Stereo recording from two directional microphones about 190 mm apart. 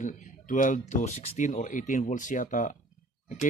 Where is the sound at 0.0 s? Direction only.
40° left (ahead or behind).